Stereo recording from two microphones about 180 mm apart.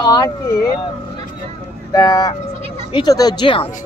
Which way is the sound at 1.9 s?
20° left (ahead or behind).